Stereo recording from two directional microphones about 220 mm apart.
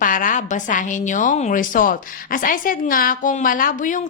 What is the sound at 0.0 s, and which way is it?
A woman's voice, 40° left (ahead or behind).